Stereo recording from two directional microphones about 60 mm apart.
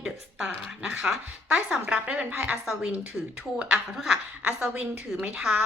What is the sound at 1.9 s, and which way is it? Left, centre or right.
A woman's voice, right.